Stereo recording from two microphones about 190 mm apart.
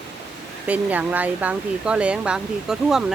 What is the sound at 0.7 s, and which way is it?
Speech, 10° right (ahead or behind).